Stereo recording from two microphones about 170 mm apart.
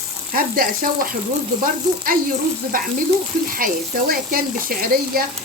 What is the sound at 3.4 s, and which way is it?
Speech, 55° right (ahead or behind).